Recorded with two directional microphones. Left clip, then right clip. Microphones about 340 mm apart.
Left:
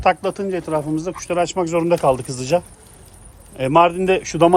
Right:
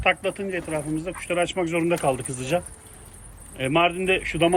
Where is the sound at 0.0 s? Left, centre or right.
Centre.